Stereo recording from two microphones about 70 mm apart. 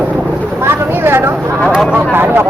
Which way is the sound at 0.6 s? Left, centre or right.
Right.